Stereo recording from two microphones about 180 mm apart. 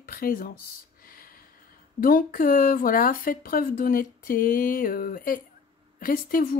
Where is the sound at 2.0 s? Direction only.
55° left (ahead or behind).